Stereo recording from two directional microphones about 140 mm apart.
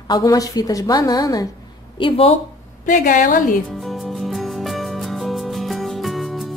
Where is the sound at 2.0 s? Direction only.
40° left (ahead or behind).